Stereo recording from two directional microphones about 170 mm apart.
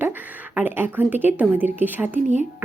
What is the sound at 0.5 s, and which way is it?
Speech, 10° right (ahead or behind).